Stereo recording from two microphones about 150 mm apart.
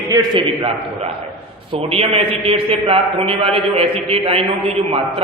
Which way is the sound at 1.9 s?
40° right (ahead or behind).